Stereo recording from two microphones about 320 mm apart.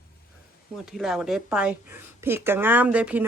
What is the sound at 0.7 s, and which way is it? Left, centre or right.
Speech, centre.